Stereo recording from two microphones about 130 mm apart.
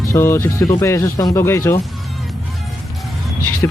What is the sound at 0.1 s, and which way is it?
A man's voice, 20° left (ahead or behind).